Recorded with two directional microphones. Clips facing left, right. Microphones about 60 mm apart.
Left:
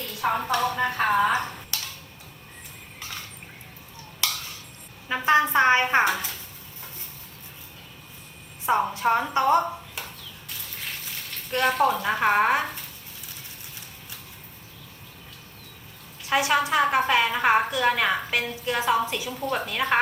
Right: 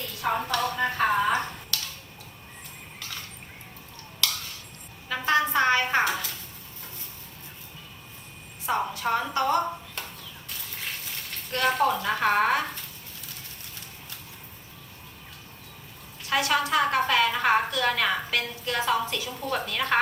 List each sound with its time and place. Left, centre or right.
0.3 s a woman's voice: centre
1.2 s music: left
3.0 s a sound: left
5.0 s a woman's voice: left
8.6 s a woman's voice: left
11.5 s a woman's voice: centre
16.3 s a woman's voice: centre